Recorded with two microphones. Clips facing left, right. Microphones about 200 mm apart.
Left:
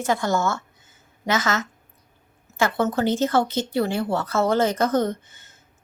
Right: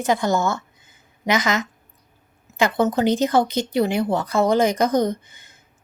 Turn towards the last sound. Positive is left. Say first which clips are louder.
# right 3 dB
turn(degrees=-15)  # may be behind; listen again after turning